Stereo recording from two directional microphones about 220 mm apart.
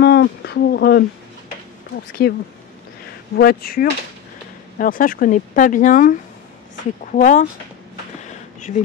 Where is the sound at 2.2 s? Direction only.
45° left (ahead or behind).